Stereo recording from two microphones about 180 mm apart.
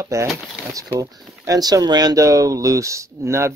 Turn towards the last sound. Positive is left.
turn(degrees=-15)  # may be behind; listen again after turning